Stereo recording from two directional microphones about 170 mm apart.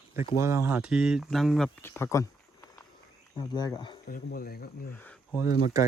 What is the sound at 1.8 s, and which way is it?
Speech, 15° left (ahead or behind).